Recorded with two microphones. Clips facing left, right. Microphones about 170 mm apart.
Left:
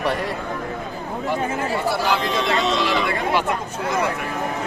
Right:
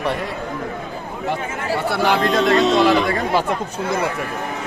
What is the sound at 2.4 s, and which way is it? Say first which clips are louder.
Speech: right 6 dB; 45° right (ahead or behind).